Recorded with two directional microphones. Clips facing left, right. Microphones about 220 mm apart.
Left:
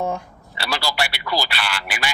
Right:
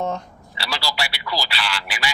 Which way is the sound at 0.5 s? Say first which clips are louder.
Left 3 dB; 55° left (ahead or behind).